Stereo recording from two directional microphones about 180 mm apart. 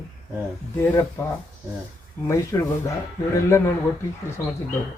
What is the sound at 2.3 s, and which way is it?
Speech, 15° left (ahead or behind).